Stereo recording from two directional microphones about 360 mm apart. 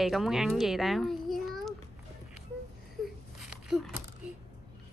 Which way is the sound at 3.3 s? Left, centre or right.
Centre.